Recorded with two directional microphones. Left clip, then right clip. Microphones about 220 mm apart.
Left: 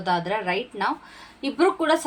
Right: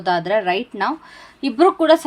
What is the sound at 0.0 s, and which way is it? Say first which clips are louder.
Speech: right 6 dB; 45° right (ahead or behind).